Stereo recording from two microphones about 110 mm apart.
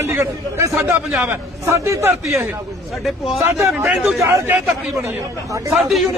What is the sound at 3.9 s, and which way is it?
Speech, 5° right (ahead or behind).